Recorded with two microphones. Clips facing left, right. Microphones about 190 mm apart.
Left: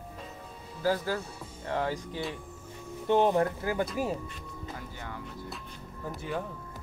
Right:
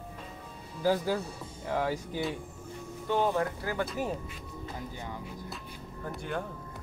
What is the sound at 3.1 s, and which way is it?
Speech, 20° left (ahead or behind).